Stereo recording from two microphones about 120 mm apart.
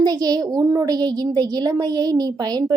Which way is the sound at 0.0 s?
35° right (ahead or behind).